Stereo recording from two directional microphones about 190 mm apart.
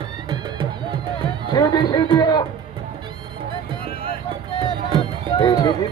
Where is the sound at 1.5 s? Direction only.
20° left (ahead or behind).